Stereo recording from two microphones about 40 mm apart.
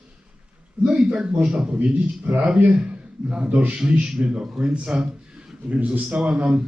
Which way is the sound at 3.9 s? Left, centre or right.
Right.